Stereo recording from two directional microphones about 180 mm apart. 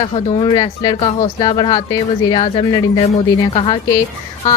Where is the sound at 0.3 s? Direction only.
30° left (ahead or behind).